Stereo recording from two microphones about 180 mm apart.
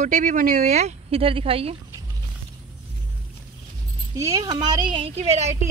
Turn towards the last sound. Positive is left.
turn(degrees=-35)  # may be behind; listen again after turning